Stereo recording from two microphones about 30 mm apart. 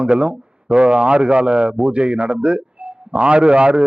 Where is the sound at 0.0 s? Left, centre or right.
Right.